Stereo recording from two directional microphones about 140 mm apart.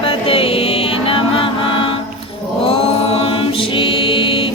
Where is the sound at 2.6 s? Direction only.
45° left (ahead or behind).